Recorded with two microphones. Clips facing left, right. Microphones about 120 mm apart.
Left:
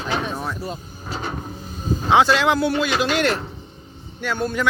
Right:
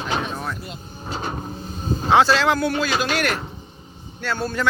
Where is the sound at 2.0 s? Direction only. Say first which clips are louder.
Even; 15° left (ahead or behind).